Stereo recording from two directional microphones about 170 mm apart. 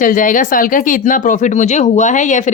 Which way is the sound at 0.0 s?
50° left (ahead or behind).